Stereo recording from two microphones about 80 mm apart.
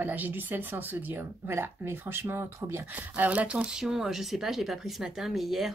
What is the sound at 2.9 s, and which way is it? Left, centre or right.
Speech, centre.